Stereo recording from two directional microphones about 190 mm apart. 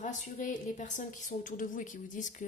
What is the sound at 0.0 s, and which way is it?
A woman's voice, 40° left (ahead or behind).